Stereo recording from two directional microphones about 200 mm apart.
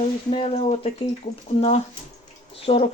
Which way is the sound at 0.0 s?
30° left (ahead or behind).